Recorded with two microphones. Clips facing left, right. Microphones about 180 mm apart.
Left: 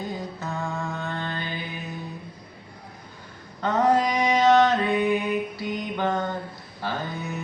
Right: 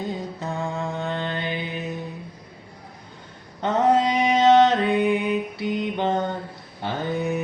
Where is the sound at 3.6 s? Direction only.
25° right (ahead or behind).